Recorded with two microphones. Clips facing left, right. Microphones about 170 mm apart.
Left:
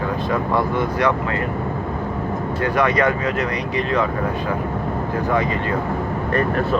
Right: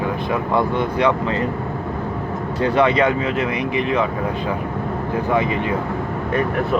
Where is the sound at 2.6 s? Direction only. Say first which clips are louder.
Right 2 dB; 25° right (ahead or behind).